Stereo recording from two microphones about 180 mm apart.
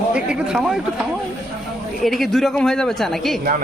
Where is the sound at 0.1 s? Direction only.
5° right (ahead or behind).